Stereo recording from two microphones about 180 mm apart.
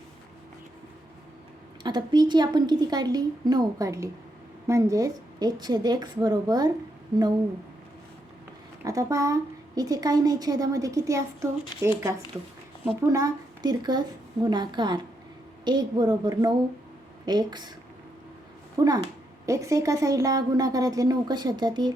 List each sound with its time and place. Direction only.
1.8 s a woman's voice: 25° right (ahead or behind)
8.8 s a woman's voice: 20° right (ahead or behind)
18.8 s a woman's voice: 20° right (ahead or behind)